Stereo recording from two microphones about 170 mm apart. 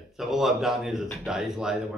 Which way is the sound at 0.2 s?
Centre (ahead or behind).